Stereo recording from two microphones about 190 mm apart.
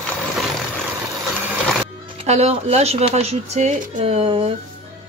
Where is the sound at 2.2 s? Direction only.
35° right (ahead or behind).